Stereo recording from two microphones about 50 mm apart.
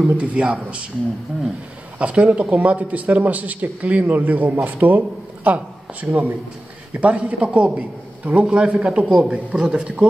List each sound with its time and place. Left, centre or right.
0.0 s speech: right
2.0 s speech: right